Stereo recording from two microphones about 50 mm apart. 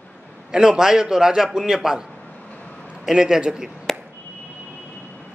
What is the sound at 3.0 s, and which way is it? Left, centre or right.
Speech, centre.